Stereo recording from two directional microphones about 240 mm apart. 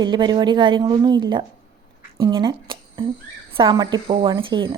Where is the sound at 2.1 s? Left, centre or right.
Centre.